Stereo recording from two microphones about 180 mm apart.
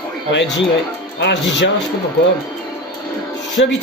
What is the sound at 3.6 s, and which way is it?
Speech, 80° left.